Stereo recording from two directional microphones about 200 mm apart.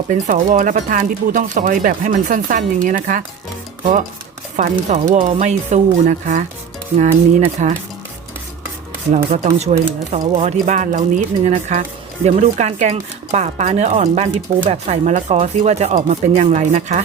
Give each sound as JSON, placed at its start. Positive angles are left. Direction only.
{"t": 0.1, "sound": "speech", "side_deg": -40}
{"t": 4.5, "sound": "speech", "side_deg": -35}
{"t": 9.1, "sound": "speech", "side_deg": -35}